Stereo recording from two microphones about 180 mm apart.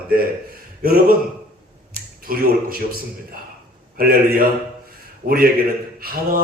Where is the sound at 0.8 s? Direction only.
55° right (ahead or behind).